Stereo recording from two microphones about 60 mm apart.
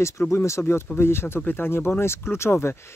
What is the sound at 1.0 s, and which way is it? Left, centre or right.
Speech, left.